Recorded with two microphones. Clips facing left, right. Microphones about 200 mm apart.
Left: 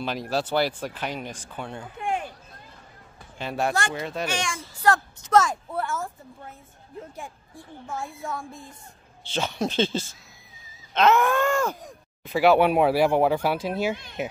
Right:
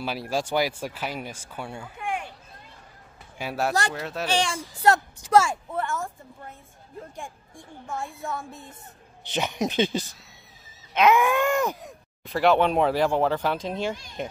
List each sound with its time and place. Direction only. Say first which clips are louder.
0.0 s speech: left 1 dB; 10° right (ahead or behind)
3.3 s speech: even; 5° right (ahead or behind)
4.3 s speech: right 4 dB; 35° right (ahead or behind)
5.3 s speech: right 1 dB; 10° right (ahead or behind)
9.2 s speech: even; 15° right (ahead or behind)
10.6 s a sound: even; 5° right (ahead or behind)
11.8 s speech: even; 5° left (ahead or behind)